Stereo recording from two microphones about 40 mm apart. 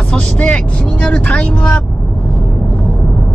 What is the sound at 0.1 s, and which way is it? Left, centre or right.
Speech, left.